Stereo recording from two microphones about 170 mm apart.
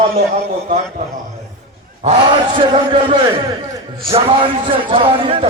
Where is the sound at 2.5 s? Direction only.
30° right (ahead or behind).